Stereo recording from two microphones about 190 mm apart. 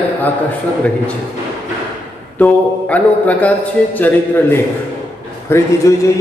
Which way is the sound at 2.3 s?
10° left (ahead or behind).